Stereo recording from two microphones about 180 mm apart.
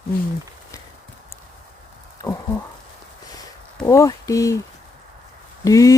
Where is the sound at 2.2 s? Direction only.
20° left (ahead or behind).